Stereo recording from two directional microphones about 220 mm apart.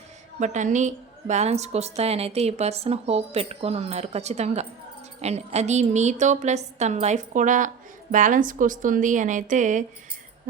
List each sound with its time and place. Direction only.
0.3 s a woman's voice: 35° right (ahead or behind)